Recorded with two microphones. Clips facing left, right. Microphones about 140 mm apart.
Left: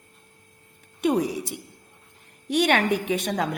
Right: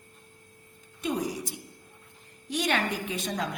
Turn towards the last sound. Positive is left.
turn(degrees=65)  # may be behind; listen again after turning